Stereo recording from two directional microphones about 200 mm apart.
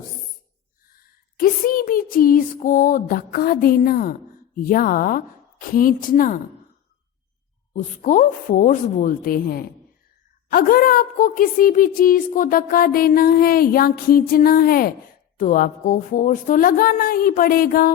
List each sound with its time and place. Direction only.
1.4 s a sound: 45° left (ahead or behind)
4.5 s a woman's voice: 45° left (ahead or behind)
7.7 s a woman's voice: 40° left (ahead or behind)